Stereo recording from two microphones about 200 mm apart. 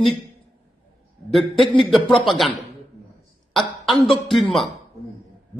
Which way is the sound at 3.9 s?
Centre (ahead or behind).